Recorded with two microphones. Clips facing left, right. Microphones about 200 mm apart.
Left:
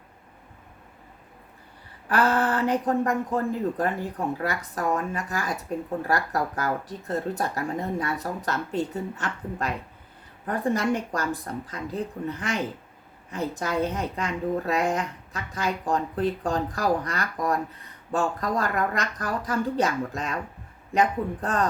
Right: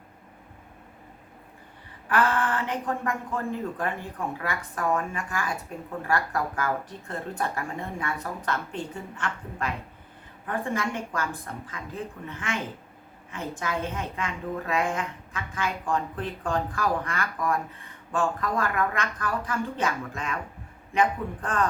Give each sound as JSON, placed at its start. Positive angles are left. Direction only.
{"t": 2.0, "sound": "a woman's voice", "side_deg": 40}